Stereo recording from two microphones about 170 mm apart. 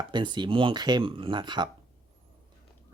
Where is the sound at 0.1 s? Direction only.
25° right (ahead or behind).